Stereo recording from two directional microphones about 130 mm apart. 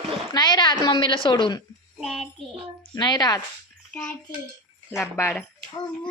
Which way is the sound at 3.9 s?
10° left (ahead or behind).